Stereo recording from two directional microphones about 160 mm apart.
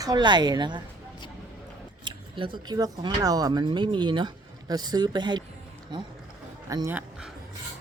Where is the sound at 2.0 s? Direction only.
30° right (ahead or behind).